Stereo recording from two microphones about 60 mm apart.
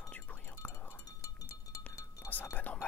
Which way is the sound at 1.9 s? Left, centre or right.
Left.